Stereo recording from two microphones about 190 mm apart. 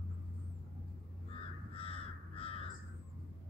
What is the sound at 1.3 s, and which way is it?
Crow, 30° left (ahead or behind).